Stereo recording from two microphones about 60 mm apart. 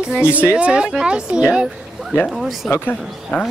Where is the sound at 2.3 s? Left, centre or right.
Centre.